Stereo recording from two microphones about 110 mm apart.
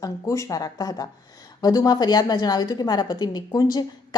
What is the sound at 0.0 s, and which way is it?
A woman's voice, 30° left (ahead or behind).